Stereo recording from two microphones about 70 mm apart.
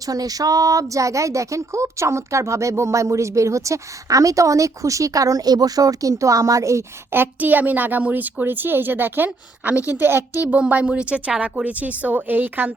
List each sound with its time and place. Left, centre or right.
0.0 s a woman's voice: right
7.1 s a woman's voice: right
10.4 s a woman's voice: centre